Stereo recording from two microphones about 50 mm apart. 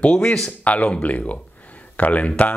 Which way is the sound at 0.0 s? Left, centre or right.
Left.